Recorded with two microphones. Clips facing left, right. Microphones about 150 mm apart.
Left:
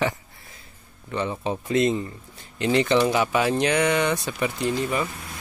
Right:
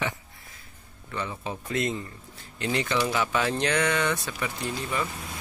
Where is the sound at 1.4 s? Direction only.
25° left (ahead or behind).